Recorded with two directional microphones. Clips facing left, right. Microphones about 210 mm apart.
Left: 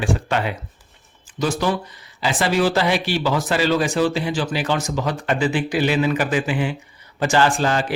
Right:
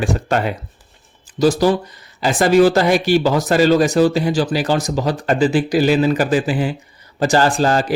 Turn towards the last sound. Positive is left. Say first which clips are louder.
# right 4 dB
turn(degrees=-40)  # may be behind; listen again after turning